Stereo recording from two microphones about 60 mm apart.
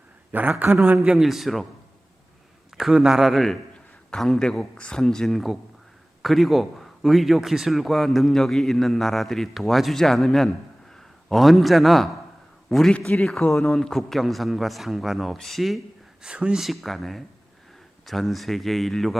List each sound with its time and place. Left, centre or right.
0.3 s speech: right
1.1 s a man's voice: centre
2.7 s a man's voice: centre
16.2 s a man's voice: centre
16.6 s a man's voice: centre